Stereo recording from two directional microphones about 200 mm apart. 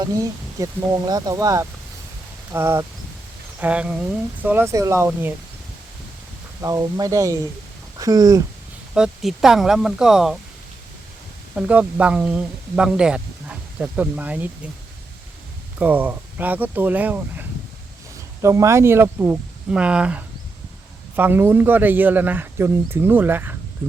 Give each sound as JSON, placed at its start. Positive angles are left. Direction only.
{"t": 0.0, "sound": "speech", "side_deg": -15}
{"t": 6.6, "sound": "speech", "side_deg": -15}
{"t": 9.0, "sound": "speech", "side_deg": 0}
{"t": 11.5, "sound": "speech", "side_deg": -5}
{"t": 15.8, "sound": "speech", "side_deg": -10}
{"t": 18.4, "sound": "speech", "side_deg": -15}